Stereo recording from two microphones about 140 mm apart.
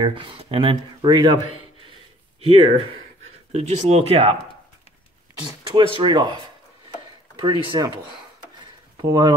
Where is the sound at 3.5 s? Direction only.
55° right (ahead or behind).